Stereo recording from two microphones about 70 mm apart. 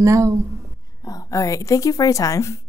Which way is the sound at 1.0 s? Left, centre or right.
Left.